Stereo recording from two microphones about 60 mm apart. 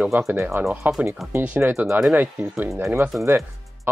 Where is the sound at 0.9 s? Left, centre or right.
Right.